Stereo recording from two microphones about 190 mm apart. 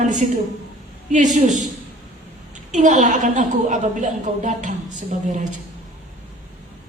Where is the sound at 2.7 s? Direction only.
40° right (ahead or behind).